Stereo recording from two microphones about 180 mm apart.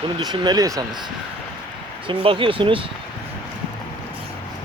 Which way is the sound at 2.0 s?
30° right (ahead or behind).